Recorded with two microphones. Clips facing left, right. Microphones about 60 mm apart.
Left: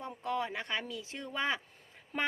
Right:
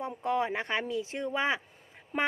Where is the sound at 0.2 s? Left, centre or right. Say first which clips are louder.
Right 5 dB; right.